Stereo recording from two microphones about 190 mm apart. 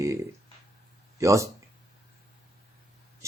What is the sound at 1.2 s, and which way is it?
Speech, 15° right (ahead or behind).